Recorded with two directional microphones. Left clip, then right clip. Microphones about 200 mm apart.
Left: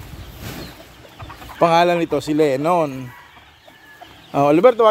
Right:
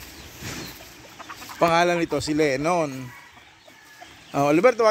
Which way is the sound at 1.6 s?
5° left (ahead or behind).